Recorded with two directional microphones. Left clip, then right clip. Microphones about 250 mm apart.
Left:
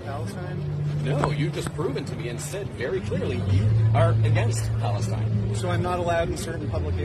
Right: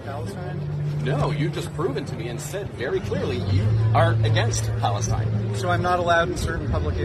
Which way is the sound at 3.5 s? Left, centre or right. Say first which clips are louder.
Right 4 dB; centre.